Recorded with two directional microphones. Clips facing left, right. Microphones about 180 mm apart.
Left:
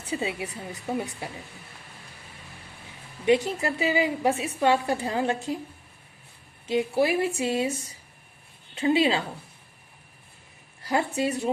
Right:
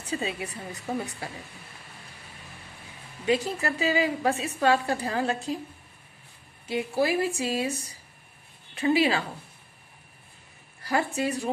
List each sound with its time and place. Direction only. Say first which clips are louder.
0.1 s speech: left 1 dB; 20° left (ahead or behind)
3.2 s a woman's voice: left 3 dB; 20° left (ahead or behind)
6.7 s a woman's voice: left 2 dB; 20° left (ahead or behind)
8.7 s a woman's voice: left 1 dB; 20° left (ahead or behind)
10.8 s a woman's voice: left 1 dB; 20° left (ahead or behind)